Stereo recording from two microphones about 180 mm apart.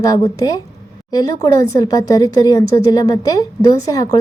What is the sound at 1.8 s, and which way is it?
Speech, 20° left (ahead or behind).